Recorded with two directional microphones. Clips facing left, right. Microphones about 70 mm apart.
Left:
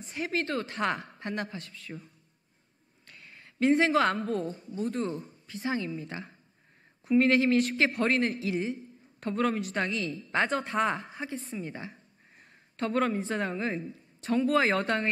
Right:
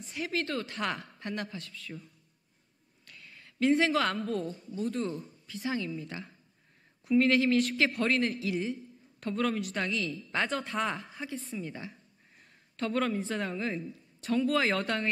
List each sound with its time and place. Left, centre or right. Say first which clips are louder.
0.1 s a man's voice: left 2 dB; left
3.1 s a woman's voice: left 1 dB; left
11.1 s a man's voice: left 2 dB; left